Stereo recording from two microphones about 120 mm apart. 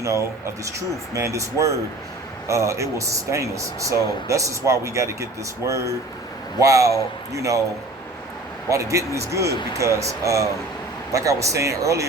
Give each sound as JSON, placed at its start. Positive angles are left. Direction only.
{"t": 0.0, "sound": "speech", "side_deg": -25}
{"t": 8.7, "sound": "speech", "side_deg": -25}